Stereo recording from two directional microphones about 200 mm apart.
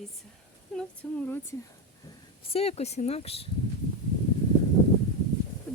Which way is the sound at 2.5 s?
30° left (ahead or behind).